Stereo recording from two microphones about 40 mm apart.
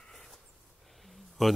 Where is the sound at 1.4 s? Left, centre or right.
Centre.